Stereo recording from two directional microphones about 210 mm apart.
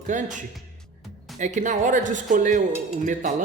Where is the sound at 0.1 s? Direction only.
35° right (ahead or behind).